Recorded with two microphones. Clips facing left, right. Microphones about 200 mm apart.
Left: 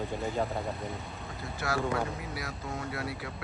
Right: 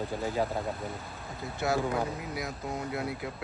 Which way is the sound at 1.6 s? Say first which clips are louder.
Right 2 dB; 20° right (ahead or behind).